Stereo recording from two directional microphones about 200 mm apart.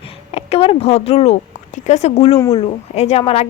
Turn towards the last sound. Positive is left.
turn(degrees=30)  # may be behind; listen again after turning